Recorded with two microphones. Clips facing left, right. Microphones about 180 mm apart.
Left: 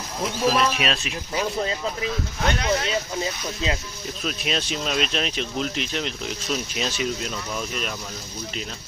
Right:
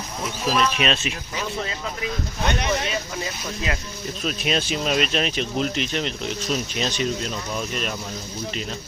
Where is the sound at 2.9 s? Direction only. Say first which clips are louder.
Left 2 dB; 25° left (ahead or behind).